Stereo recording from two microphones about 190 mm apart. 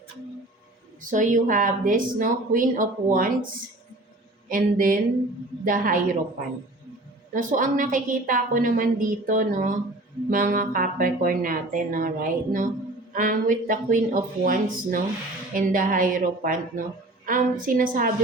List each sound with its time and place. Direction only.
1.0 s a woman's voice: 40° right (ahead or behind)
7.3 s a woman's voice: 45° right (ahead or behind)